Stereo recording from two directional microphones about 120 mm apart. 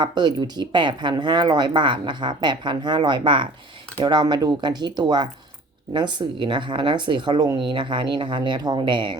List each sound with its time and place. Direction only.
0.0 s speech: 35° right (ahead or behind)